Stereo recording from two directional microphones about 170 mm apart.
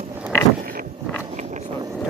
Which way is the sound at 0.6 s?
55° right (ahead or behind).